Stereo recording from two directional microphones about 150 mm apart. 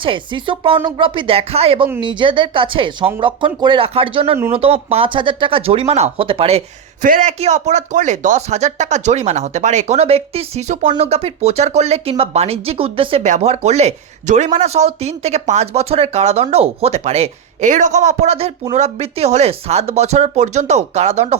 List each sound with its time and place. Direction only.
0.0 s speech: 35° right (ahead or behind)
7.0 s a man's voice: 60° right (ahead or behind)
7.3 s speech: 45° right (ahead or behind)
13.2 s speech: 50° right (ahead or behind)